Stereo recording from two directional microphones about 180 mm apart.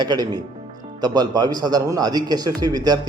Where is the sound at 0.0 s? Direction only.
25° right (ahead or behind).